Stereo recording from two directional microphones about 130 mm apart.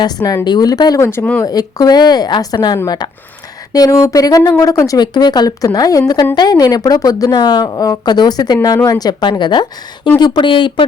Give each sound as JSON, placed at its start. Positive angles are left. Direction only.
{"t": 0.0, "sound": "a woman's voice", "side_deg": 30}
{"t": 1.5, "sound": "a woman's voice", "side_deg": 30}